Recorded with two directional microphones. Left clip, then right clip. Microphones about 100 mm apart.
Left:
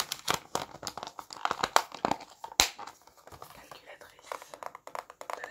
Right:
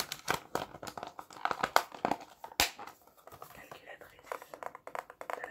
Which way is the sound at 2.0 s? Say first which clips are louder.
Left 3 dB; 55° left (ahead or behind).